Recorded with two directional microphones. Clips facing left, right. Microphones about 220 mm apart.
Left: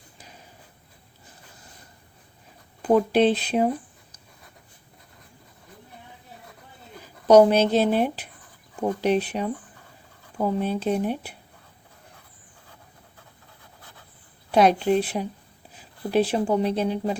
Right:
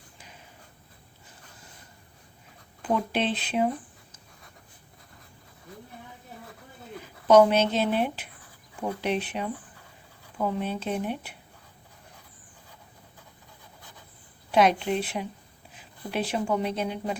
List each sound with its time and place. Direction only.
2.8 s speech: 40° left (ahead or behind)
7.0 s speech: 35° left (ahead or behind)
14.5 s speech: 35° left (ahead or behind)